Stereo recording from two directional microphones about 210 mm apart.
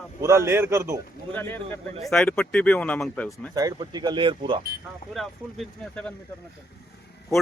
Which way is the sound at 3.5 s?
20° right (ahead or behind).